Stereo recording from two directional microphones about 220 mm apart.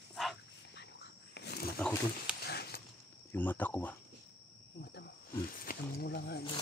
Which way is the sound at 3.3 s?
10° left (ahead or behind).